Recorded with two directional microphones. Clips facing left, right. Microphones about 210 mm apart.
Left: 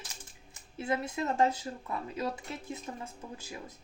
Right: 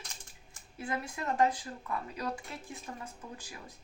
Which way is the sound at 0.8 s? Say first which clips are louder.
Left 5 dB; 25° left (ahead or behind).